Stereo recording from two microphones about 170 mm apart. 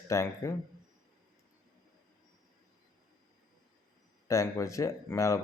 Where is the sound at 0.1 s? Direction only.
15° left (ahead or behind).